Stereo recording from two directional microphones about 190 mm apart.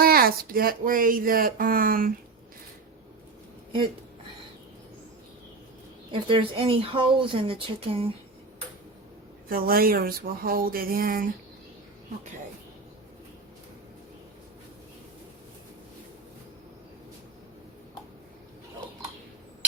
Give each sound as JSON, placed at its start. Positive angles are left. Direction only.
{"t": 0.0, "sound": "speech", "side_deg": -50}
{"t": 6.1, "sound": "speech", "side_deg": -25}
{"t": 9.5, "sound": "speech", "side_deg": -50}